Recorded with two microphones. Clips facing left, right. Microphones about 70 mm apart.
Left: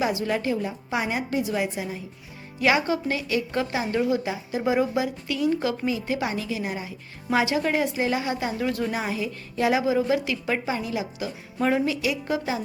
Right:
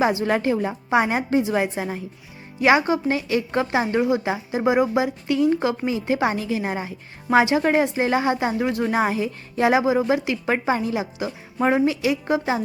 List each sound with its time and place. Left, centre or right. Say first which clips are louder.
0.0 s a woman's voice: right 5 dB; right
0.3 s a woman's voice: right 4 dB; right
2.6 s a woman's voice: right 4 dB; right
8.9 s a woman's voice: right 6 dB; right